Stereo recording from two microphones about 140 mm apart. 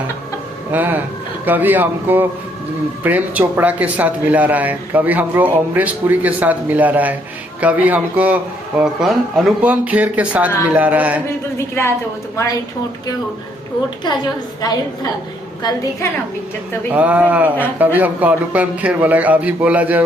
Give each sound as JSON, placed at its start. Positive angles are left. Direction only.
{"t": 0.7, "sound": "speech", "side_deg": -15}
{"t": 11.5, "sound": "speech", "side_deg": 20}
{"t": 16.9, "sound": "speech", "side_deg": -10}